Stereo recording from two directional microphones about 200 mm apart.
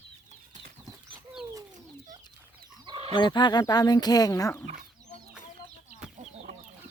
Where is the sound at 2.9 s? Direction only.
25° right (ahead or behind).